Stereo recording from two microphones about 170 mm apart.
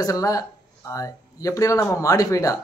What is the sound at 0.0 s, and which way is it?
A man's voice, 20° left (ahead or behind).